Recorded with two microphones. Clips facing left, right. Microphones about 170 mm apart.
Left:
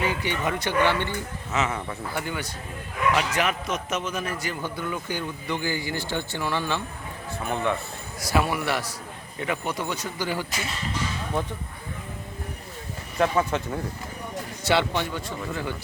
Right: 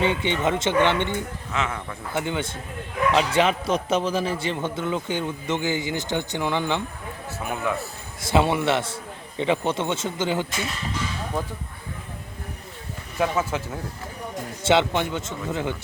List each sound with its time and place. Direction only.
0.0 s a man's voice: 25° right (ahead or behind)
1.5 s speech: 5° left (ahead or behind)
2.1 s a man's voice: 20° right (ahead or behind)
7.3 s speech: 5° right (ahead or behind)
8.2 s a man's voice: 25° right (ahead or behind)
13.1 s speech: 5° right (ahead or behind)
14.6 s a man's voice: 20° right (ahead or behind)